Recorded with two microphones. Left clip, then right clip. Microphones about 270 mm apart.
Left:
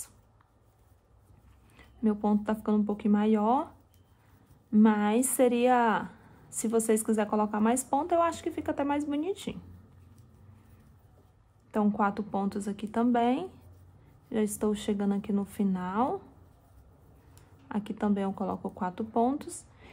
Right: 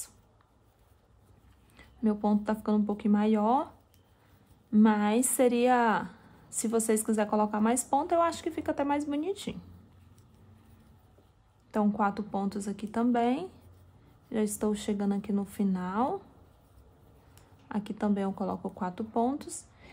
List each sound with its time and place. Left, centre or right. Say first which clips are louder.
1.8 s a woman's voice: even; centre
11.7 s a woman's voice: even; centre
17.4 s speech: even; centre